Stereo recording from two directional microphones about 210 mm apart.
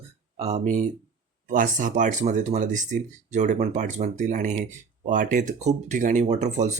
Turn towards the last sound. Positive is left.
turn(degrees=-35)  # may be behind; listen again after turning